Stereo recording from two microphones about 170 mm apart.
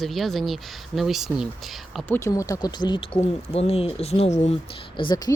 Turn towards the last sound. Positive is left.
turn(degrees=25)  # may be behind; listen again after turning